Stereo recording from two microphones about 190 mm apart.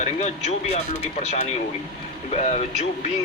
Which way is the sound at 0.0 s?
35° left (ahead or behind).